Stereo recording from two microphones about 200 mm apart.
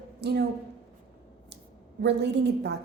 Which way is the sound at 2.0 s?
60° right (ahead or behind).